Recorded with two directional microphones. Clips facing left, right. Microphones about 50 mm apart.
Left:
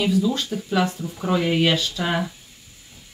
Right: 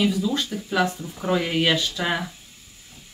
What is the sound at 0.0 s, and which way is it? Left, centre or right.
Speech, centre.